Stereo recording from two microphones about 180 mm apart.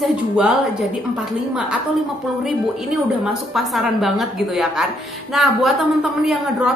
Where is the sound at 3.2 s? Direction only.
Centre (ahead or behind).